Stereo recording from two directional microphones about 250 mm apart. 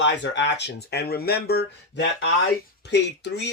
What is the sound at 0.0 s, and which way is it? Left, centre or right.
Speech, left.